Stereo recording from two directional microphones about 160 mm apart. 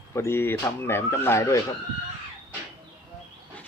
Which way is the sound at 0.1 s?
15° left (ahead or behind).